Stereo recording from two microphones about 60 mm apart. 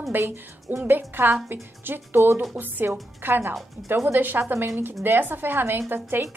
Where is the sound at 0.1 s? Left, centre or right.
Right.